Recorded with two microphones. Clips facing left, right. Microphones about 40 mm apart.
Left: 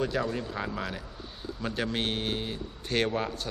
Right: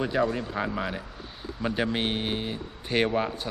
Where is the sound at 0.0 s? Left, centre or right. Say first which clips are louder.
Right 4 dB; centre.